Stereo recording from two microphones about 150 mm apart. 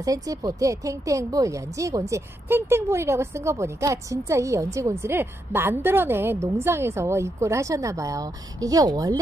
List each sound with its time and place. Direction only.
0.0 s a woman's voice: 25° right (ahead or behind)